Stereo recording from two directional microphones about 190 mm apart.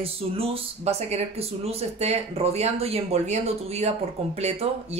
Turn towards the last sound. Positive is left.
turn(degrees=-30)  # may be behind; listen again after turning